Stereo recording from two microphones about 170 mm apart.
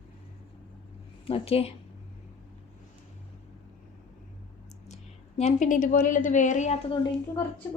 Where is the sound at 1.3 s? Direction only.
35° left (ahead or behind).